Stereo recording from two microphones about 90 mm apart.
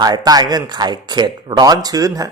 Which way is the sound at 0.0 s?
50° right (ahead or behind).